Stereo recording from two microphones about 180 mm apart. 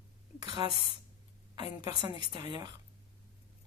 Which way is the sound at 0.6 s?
20° right (ahead or behind).